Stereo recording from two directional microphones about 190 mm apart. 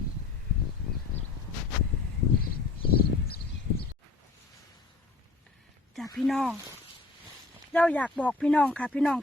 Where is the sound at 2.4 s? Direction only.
50° left (ahead or behind).